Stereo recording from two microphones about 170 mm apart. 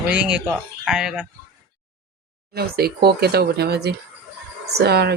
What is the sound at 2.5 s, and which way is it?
Speech, 65° right (ahead or behind).